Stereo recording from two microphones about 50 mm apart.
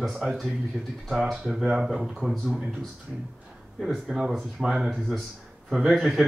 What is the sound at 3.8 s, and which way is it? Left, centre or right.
Speech, centre.